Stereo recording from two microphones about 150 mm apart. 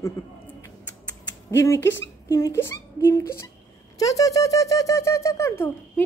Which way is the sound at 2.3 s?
20° left (ahead or behind).